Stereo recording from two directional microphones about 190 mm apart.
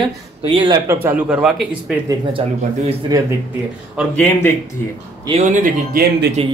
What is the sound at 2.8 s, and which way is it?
Speech, 20° right (ahead or behind).